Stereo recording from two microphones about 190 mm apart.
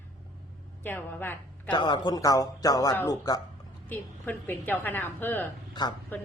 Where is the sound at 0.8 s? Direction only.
10° left (ahead or behind).